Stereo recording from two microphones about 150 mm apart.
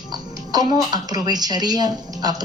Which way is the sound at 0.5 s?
25° right (ahead or behind).